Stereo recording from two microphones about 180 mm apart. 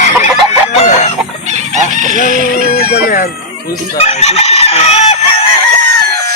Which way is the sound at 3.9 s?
35° left (ahead or behind).